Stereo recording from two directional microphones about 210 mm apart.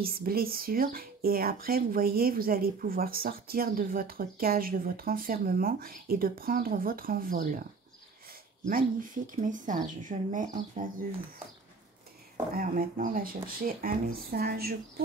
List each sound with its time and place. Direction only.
0.0 s speech: 45° right (ahead or behind)
12.5 s speech: 40° right (ahead or behind)